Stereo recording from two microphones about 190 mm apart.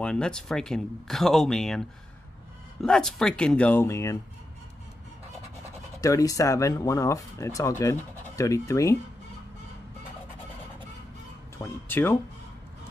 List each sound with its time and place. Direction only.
0.0 s speech: 5° left (ahead or behind)
5.9 s speech: 20° left (ahead or behind)
11.5 s speech: 10° left (ahead or behind)